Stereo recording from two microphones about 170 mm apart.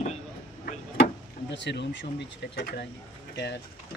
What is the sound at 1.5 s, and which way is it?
Speech, 90° left.